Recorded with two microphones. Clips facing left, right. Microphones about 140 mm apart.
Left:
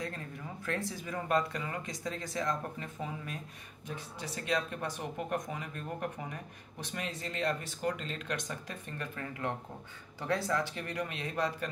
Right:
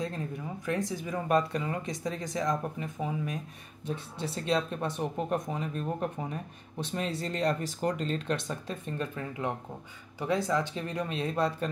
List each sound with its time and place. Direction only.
0.7 s speech: 15° right (ahead or behind); by 8.0 s 40° right (ahead or behind)
8.3 s speech: 25° right (ahead or behind)